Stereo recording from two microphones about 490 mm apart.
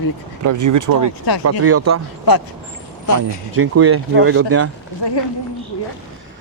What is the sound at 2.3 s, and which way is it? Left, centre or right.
Speech, left.